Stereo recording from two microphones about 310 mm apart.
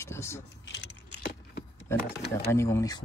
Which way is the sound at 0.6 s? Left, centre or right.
Left.